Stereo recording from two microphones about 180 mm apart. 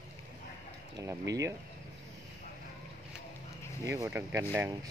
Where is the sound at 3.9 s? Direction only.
15° right (ahead or behind).